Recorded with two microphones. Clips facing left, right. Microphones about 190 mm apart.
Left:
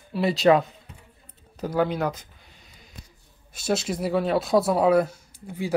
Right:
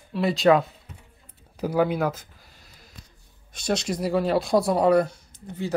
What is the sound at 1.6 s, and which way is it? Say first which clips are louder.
Speech: right 2 dB; 10° right (ahead or behind).